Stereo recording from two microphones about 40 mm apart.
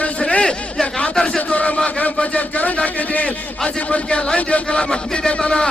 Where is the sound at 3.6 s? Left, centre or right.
Left.